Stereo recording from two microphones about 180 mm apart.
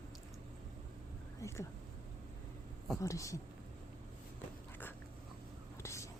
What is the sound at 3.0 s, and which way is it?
Speech, 15° left (ahead or behind).